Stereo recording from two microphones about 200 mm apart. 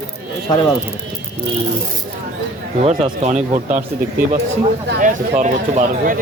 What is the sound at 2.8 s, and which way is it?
Speech, 30° right (ahead or behind).